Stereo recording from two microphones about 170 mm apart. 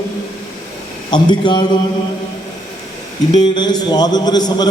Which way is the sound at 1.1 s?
25° left (ahead or behind).